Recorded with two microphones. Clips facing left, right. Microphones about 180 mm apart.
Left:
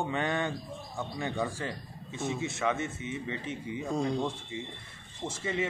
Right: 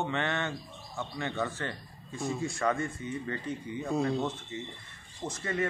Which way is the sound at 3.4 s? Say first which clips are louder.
Even; 90° left.